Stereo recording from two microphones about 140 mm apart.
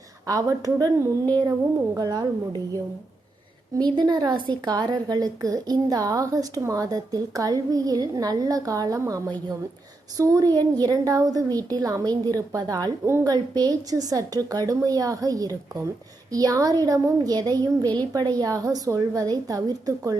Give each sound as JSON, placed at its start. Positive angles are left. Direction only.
{"t": 0.3, "sound": "a woman's voice", "side_deg": -25}
{"t": 3.8, "sound": "a woman's voice", "side_deg": -30}